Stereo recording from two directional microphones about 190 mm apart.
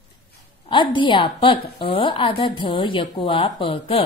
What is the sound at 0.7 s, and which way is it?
Speech, 25° left (ahead or behind).